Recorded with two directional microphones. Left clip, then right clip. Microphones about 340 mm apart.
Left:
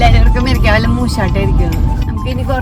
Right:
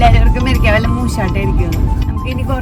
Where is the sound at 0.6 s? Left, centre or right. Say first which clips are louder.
Left 1 dB; centre.